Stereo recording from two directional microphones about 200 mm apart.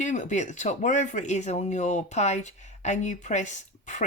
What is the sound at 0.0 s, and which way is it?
Speech, 35° left (ahead or behind).